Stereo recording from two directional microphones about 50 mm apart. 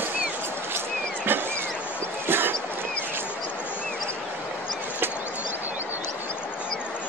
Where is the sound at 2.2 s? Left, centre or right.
Right.